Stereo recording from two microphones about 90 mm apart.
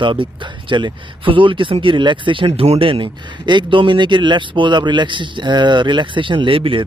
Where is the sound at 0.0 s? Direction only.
65° right (ahead or behind).